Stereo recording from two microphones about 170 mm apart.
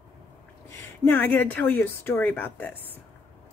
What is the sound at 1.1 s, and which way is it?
Speech, 10° left (ahead or behind).